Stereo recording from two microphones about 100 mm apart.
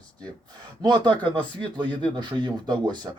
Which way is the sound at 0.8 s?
45° right (ahead or behind).